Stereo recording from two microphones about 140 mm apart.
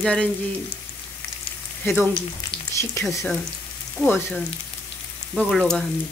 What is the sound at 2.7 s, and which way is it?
Speech, 20° left (ahead or behind).